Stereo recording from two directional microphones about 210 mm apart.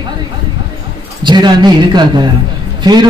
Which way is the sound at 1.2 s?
20° right (ahead or behind).